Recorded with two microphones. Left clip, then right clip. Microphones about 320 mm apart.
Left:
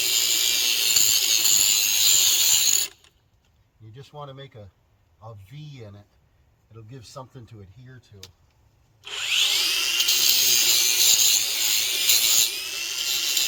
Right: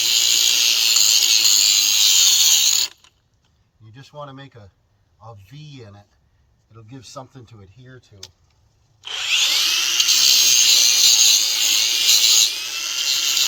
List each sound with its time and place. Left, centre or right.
0.0 s a sound: centre
3.9 s speech: centre
9.0 s wood: centre